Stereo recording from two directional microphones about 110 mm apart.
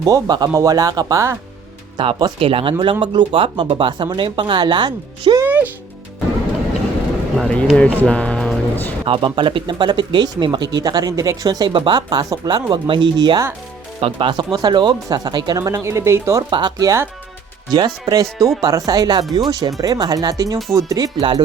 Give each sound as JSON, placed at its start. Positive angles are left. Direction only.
{"t": 0.0, "sound": "speech", "side_deg": -35}
{"t": 2.0, "sound": "speech", "side_deg": -40}
{"t": 2.4, "sound": "speech", "side_deg": -55}
{"t": 5.4, "sound": "music", "side_deg": -15}
{"t": 7.3, "sound": "speech", "side_deg": 10}
{"t": 9.0, "sound": "speech", "side_deg": -50}
{"t": 15.7, "sound": "speech", "side_deg": -25}
{"t": 16.5, "sound": "speech", "side_deg": -40}
{"t": 17.7, "sound": "speech", "side_deg": -40}
{"t": 21.2, "sound": "speech", "side_deg": -50}